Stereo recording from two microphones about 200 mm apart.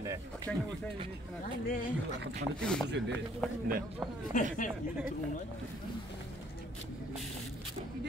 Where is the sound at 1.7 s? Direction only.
40° left (ahead or behind).